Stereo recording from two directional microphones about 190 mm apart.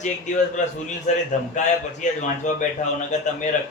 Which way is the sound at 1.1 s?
40° left (ahead or behind).